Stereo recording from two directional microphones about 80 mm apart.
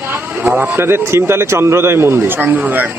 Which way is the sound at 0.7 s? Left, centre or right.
Right.